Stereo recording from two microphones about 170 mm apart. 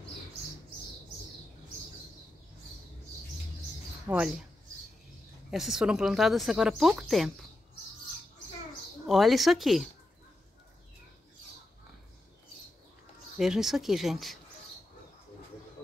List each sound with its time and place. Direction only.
4.1 s speech: 5° right (ahead or behind)
5.5 s a woman's voice: centre (ahead or behind)
9.0 s a woman's voice: centre (ahead or behind)
13.4 s a woman's voice: centre (ahead or behind)